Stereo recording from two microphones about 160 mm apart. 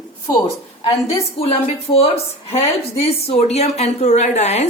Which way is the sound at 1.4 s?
40° left (ahead or behind).